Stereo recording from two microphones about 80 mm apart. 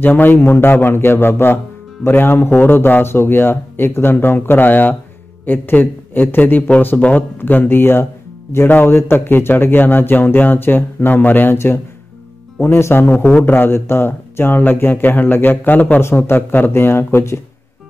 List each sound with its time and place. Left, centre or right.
0.0 s speech: left